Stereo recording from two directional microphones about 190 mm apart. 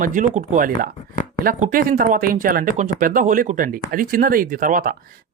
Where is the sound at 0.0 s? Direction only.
45° right (ahead or behind).